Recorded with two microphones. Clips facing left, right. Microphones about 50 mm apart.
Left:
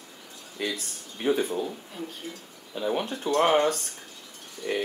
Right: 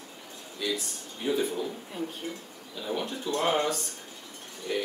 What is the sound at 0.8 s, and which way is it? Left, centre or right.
Speech, left.